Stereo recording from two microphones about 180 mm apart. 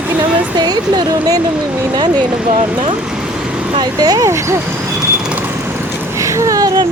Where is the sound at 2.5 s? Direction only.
30° right (ahead or behind).